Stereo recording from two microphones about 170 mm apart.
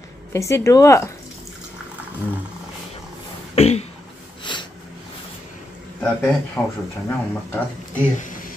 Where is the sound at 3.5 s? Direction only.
40° left (ahead or behind).